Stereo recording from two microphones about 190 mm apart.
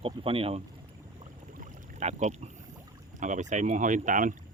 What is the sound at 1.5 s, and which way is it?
Boat, 40° right (ahead or behind).